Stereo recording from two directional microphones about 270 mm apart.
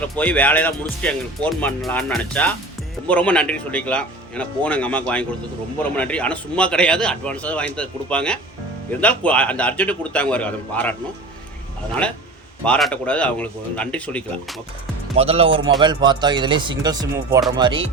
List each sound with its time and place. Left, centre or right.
0.0 s speech: centre
12.6 s speech: centre
15.1 s speech: right